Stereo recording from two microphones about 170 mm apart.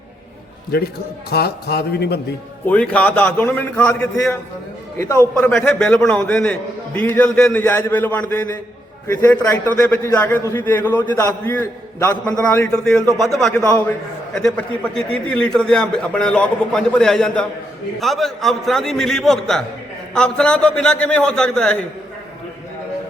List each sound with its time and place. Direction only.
1.3 s speech: 70° left (ahead or behind)
2.6 s a man's voice: 10° left (ahead or behind)
5.5 s a man's voice: 5° left (ahead or behind)
13.6 s a man's voice: 10° left (ahead or behind)